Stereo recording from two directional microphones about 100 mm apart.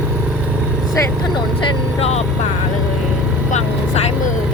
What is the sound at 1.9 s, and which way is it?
Speech, 90° left.